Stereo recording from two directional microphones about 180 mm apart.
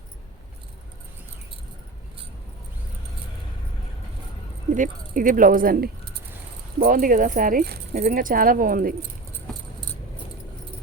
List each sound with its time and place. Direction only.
4.7 s speech: 45° right (ahead or behind)
7.9 s speech: 45° right (ahead or behind)